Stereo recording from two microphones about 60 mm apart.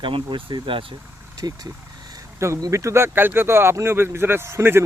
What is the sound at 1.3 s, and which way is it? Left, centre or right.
Speech, right.